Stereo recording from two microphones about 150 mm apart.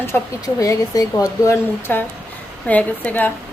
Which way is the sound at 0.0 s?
20° left (ahead or behind).